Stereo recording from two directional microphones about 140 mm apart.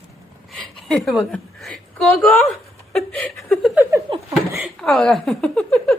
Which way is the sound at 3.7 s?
15° right (ahead or behind).